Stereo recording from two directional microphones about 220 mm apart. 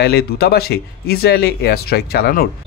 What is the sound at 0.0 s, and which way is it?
Speech, 45° left (ahead or behind).